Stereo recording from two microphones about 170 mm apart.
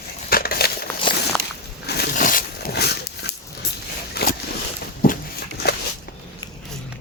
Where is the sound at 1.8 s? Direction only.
70° left (ahead or behind).